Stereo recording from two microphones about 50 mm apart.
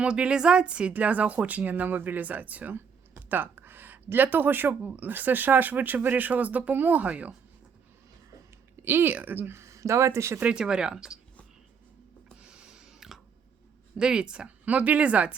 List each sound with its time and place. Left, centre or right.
0.0 s speech: centre
2.7 s a sound: right
4.9 s speech: right
8.7 s speech: right
9.6 s speech: right
10.4 s speech: centre
12.4 s a sound: centre
14.0 s speech: centre